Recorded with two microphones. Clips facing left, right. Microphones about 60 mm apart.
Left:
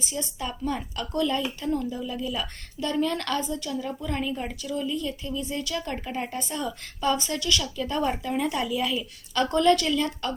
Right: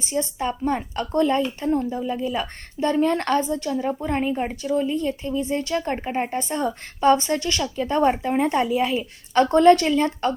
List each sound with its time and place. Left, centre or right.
0.0 s speech: right